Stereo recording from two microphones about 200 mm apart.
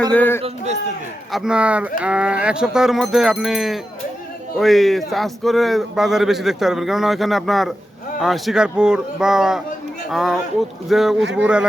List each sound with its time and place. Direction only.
0.1 s speech: 10° left (ahead or behind)
0.4 s speech: 35° right (ahead or behind)
1.3 s speech: 5° right (ahead or behind)